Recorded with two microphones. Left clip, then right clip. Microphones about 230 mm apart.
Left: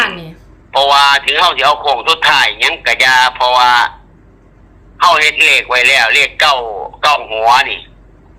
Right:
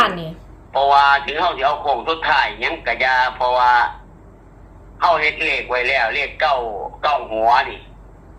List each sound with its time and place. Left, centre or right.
0.7 s a man's voice: left
5.0 s a man's voice: left